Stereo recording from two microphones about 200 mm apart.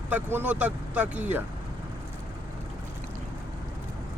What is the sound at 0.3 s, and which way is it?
Speech, 5° right (ahead or behind).